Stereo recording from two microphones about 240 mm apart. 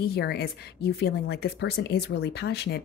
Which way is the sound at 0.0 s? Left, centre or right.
Left.